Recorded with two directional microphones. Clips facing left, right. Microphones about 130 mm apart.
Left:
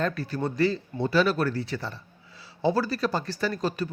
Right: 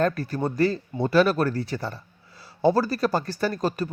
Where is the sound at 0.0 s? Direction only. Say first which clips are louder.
Right 4 dB; 45° right (ahead or behind).